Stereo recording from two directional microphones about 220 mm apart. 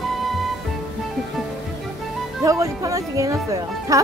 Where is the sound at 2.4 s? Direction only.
15° right (ahead or behind).